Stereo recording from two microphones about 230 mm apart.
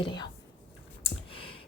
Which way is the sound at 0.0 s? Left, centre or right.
Centre.